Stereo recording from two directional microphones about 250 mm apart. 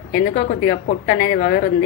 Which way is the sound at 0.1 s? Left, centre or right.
Left.